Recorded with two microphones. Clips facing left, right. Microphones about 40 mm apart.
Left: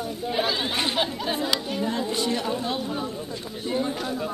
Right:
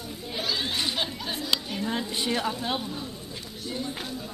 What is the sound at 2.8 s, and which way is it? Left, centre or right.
Speech, left.